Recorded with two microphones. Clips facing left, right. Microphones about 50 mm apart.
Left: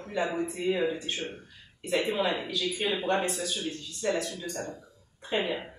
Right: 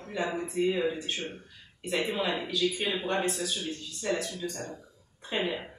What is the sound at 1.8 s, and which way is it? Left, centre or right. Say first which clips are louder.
Speech: left 2 dB; centre.